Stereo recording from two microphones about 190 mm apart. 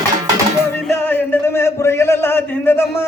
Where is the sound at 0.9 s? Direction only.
10° left (ahead or behind).